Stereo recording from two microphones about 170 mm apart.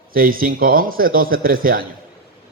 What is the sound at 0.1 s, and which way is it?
A man's voice, 55° right (ahead or behind).